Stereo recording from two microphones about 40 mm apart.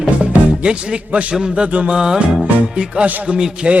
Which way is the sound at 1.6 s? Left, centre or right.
Right.